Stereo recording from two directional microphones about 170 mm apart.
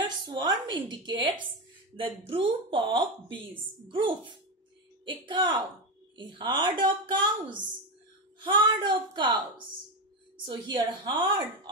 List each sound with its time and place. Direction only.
0.0 s a woman's voice: 25° right (ahead or behind)